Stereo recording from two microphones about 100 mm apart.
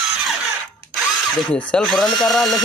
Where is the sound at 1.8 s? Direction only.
Centre (ahead or behind).